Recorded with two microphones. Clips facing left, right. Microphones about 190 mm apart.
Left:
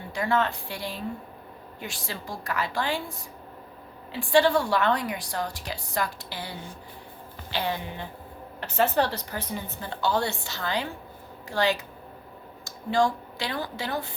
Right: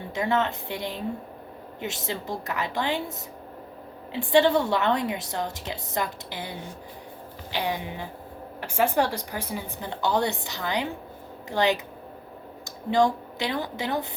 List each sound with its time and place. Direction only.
0.1 s a woman's voice: 20° right (ahead or behind)